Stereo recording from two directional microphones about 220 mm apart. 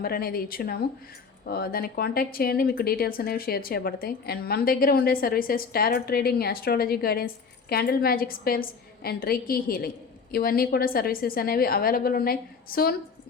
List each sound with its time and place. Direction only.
0.0 s speech: 45° left (ahead or behind)